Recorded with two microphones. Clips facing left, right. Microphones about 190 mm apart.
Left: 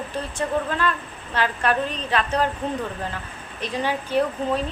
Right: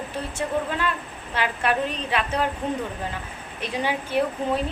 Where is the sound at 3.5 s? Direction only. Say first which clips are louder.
Left 1 dB; 10° right (ahead or behind).